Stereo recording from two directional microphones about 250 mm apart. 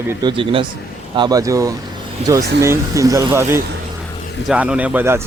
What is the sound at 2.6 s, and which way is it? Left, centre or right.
Speech, centre.